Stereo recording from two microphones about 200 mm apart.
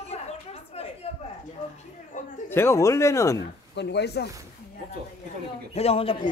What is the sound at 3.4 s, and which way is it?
Speech, 60° left (ahead or behind).